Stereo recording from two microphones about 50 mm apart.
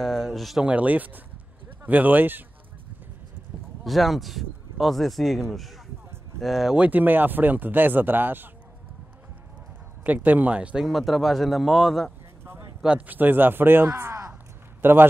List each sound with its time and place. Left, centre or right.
0.0 s speech: centre
0.6 s speech: right
3.8 s speech: centre
6.4 s a man's voice: centre
6.9 s speech: right
10.0 s speech: right
10.9 s a man's voice: centre
13.0 s speech: right